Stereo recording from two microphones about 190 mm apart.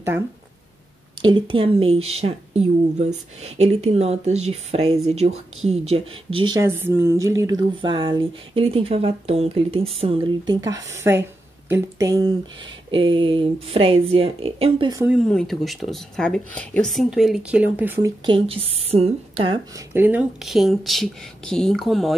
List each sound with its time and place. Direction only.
1.2 s a woman's voice: 25° right (ahead or behind)
15.0 s a woman's voice: centre (ahead or behind); by 19.6 s 30° right (ahead or behind)
19.9 s speech: 10° right (ahead or behind)